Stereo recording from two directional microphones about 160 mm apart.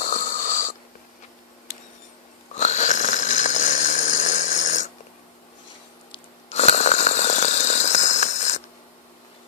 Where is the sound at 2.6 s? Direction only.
50° left (ahead or behind).